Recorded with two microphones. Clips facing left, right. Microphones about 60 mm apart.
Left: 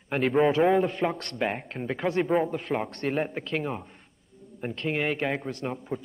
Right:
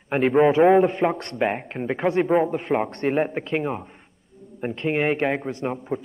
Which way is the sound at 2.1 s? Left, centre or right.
Centre.